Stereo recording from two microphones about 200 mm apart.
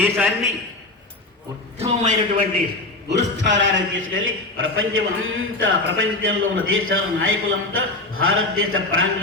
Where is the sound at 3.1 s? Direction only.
60° right (ahead or behind).